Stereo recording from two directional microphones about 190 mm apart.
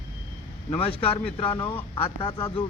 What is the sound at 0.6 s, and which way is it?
A man's voice, 30° left (ahead or behind).